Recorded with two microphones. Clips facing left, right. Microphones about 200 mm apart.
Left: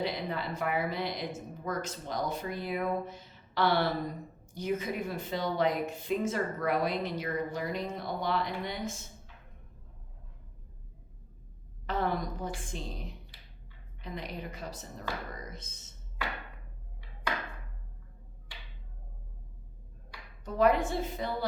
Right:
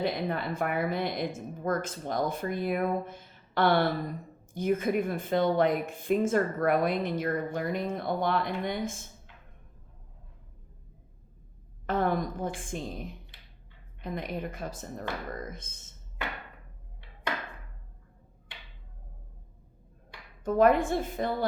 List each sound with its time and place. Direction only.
0.0 s speech: 50° right (ahead or behind)
11.9 s speech: 50° right (ahead or behind)
14.0 s speech: 50° right (ahead or behind)
20.4 s speech: 50° right (ahead or behind)